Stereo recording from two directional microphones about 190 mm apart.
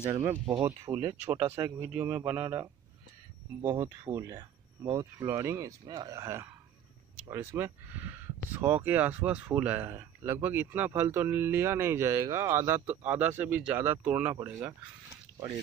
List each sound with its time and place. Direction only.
0.1 s speech: 15° right (ahead or behind)